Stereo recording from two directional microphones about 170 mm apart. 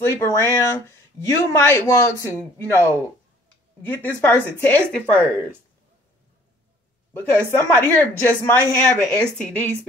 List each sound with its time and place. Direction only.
0.2 s speech: 15° left (ahead or behind)
5.1 s speech: 10° right (ahead or behind)
7.2 s speech: 10° left (ahead or behind)